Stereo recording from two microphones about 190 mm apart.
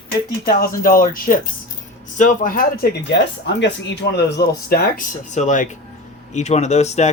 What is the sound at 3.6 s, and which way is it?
Speech, 65° left (ahead or behind).